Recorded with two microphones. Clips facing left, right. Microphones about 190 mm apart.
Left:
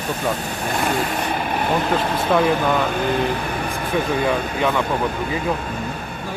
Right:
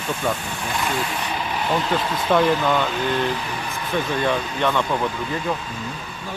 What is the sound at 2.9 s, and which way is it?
Speech, 55° left (ahead or behind).